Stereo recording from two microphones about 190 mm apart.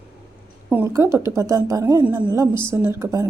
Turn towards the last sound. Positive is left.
turn(degrees=-15)  # may be behind; listen again after turning